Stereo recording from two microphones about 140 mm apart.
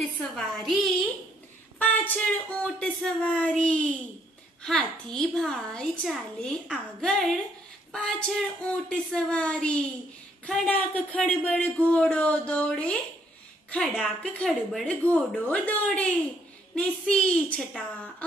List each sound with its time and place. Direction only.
0.6 s a child's voice: centre (ahead or behind)
1.8 s a sound: 15° left (ahead or behind)
2.6 s a child's voice: 5° left (ahead or behind)